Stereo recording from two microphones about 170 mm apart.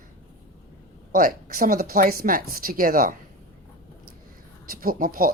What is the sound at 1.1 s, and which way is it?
A woman's voice, 55° right (ahead or behind).